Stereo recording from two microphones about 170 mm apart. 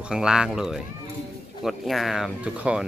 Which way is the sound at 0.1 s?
5° right (ahead or behind).